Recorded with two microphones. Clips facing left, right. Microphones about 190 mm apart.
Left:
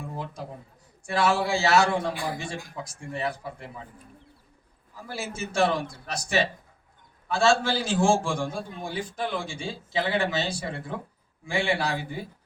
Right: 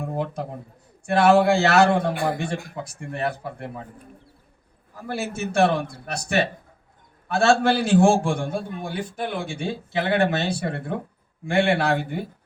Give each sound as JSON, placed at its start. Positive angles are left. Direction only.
{"t": 0.0, "sound": "a sound", "side_deg": -60}
{"t": 1.0, "sound": "a man's voice", "side_deg": -60}
{"t": 4.9, "sound": "a man's voice", "side_deg": -60}
{"t": 7.3, "sound": "a man's voice", "side_deg": -60}